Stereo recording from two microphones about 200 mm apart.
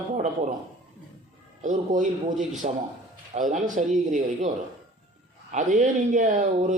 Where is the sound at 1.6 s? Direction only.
40° right (ahead or behind).